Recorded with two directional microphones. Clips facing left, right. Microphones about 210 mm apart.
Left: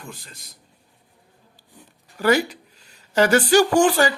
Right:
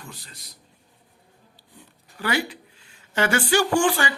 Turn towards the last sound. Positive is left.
turn(degrees=40)  # may be behind; listen again after turning